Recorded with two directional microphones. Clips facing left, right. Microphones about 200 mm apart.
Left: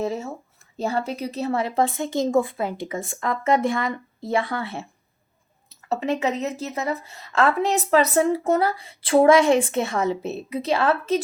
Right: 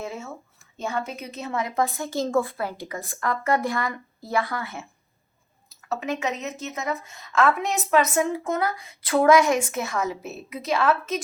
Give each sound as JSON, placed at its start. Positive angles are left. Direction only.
{"t": 0.0, "sound": "a woman's voice", "side_deg": 35}
{"t": 5.9, "sound": "a woman's voice", "side_deg": 30}